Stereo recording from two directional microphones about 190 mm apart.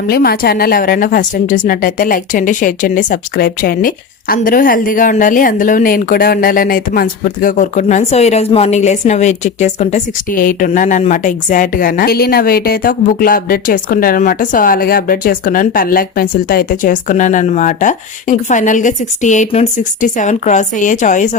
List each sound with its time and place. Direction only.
0.1 s a woman's voice: 55° left (ahead or behind)